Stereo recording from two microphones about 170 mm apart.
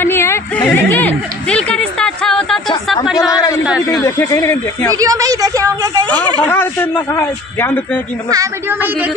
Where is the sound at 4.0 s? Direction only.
15° left (ahead or behind).